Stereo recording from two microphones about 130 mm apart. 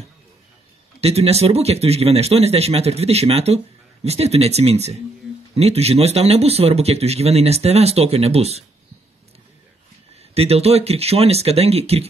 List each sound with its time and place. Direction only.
1.0 s speech: 55° right (ahead or behind)
10.3 s speech: 50° right (ahead or behind)